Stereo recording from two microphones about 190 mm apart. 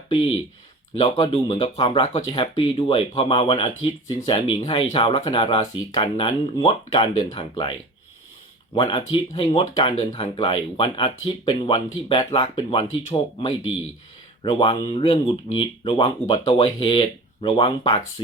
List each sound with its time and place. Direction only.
0.1 s speech: 25° left (ahead or behind)